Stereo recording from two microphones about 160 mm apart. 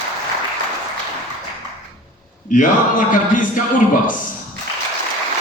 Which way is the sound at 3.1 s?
55° left (ahead or behind).